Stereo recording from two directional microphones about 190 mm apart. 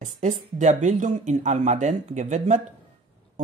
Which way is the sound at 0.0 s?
40° right (ahead or behind).